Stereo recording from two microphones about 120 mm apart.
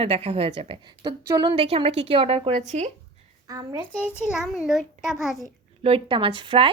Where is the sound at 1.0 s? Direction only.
35° right (ahead or behind); by 2.6 s 55° right (ahead or behind).